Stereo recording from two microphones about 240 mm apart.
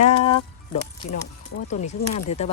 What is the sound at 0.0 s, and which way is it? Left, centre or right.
Music, left.